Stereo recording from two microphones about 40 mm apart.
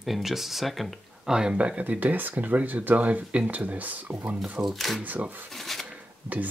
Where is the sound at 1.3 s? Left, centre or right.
Centre.